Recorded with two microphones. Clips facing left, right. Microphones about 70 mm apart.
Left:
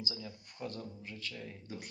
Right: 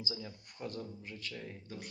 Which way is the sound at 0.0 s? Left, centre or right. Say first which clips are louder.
Right 1 dB; right.